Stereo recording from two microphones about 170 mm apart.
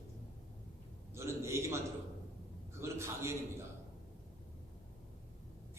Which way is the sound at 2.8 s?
15° right (ahead or behind).